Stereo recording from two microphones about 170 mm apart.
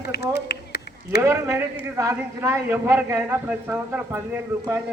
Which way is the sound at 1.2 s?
15° right (ahead or behind).